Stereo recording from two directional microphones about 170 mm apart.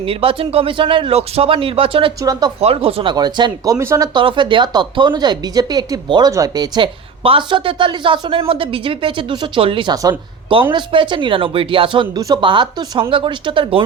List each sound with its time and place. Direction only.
0.0 s speech: 35° right (ahead or behind)
2.6 s speech: 35° right (ahead or behind)